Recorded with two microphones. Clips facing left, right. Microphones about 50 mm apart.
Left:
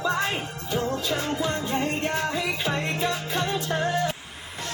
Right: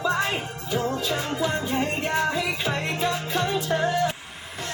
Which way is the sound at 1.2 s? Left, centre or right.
Centre.